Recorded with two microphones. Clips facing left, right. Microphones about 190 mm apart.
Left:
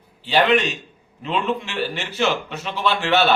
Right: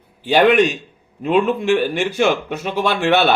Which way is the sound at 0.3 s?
55° right (ahead or behind).